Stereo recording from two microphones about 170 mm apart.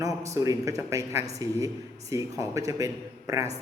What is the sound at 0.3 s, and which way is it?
Speech, 20° right (ahead or behind).